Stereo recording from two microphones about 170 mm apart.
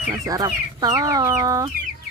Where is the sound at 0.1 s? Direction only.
20° right (ahead or behind).